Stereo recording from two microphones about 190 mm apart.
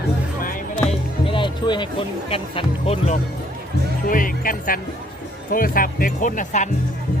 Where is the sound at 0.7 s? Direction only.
25° left (ahead or behind).